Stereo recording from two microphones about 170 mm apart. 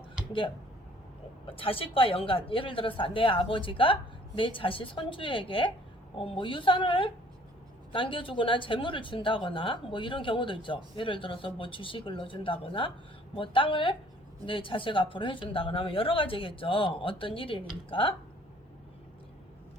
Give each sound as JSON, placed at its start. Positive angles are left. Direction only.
{"t": 1.5, "sound": "a woman's voice", "side_deg": 35}